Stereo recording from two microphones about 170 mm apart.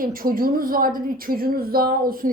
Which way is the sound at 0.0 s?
55° right (ahead or behind).